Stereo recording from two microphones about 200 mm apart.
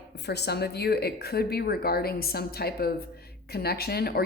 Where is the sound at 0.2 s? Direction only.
55° left (ahead or behind).